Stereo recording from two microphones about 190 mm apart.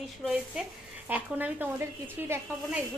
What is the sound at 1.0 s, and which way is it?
Speech, 10° right (ahead or behind).